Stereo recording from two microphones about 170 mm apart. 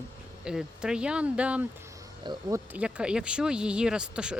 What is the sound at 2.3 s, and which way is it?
Speech, 25° right (ahead or behind).